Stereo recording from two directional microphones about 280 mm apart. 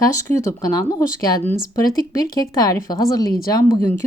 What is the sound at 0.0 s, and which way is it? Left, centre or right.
Speech, centre.